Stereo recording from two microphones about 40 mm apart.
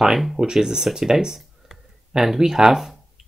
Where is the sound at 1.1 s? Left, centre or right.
Centre.